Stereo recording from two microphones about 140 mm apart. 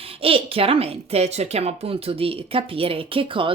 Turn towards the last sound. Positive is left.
turn(degrees=-40)  # may be behind; listen again after turning